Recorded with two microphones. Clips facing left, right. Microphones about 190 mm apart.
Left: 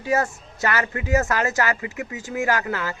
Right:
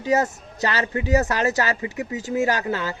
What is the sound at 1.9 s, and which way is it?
Speech, 35° right (ahead or behind).